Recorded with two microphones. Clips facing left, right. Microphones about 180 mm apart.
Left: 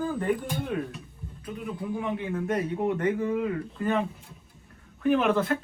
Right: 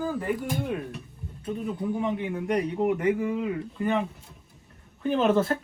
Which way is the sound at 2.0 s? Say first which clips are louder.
Right 1 dB; 15° right (ahead or behind).